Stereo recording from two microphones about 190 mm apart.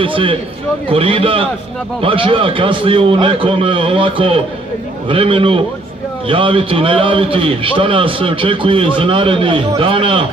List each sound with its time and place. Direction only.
0.0 s a man's voice: 25° right (ahead or behind)